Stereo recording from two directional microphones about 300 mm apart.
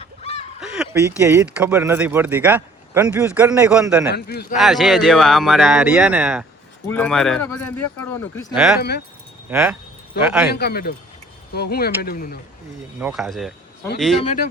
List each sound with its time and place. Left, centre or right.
0.0 s honk: left
0.6 s speech: centre
4.1 s speech: left
4.5 s speech: centre
8.5 s speech: centre
8.8 s speech: left
9.5 s speech: centre
10.5 s speech: left
13.0 s speech: centre
14.2 s speech: left